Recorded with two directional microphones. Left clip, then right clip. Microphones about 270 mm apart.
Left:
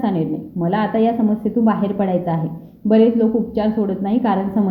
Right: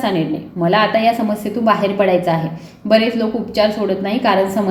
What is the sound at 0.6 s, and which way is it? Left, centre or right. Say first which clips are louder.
A woman's voice: right 5 dB; left.